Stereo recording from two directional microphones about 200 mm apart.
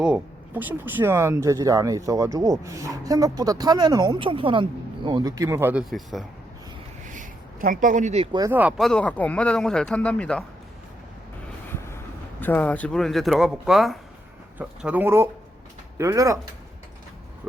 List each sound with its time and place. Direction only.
0.0 s speech: 5° right (ahead or behind)
5.9 s speech: centre (ahead or behind)
7.1 s a sound: 40° right (ahead or behind)
8.4 s speech: 10° right (ahead or behind)
8.9 s speech: 5° left (ahead or behind)
12.4 s speech: 10° left (ahead or behind); by 16.4 s 15° right (ahead or behind)